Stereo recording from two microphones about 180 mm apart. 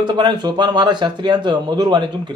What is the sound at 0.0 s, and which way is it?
Speech, 25° right (ahead or behind).